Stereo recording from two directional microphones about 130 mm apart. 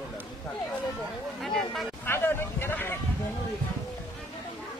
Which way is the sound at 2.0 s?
20° left (ahead or behind).